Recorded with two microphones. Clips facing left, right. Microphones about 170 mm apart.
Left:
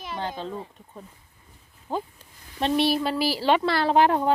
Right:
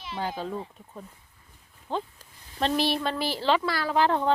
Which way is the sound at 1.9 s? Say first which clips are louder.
Left 1 dB; 5° left (ahead or behind).